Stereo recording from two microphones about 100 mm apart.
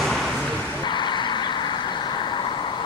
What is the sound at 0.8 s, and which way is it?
Vehicle, 50° left (ahead or behind).